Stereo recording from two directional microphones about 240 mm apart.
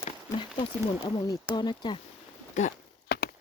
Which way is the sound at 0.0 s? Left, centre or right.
Left.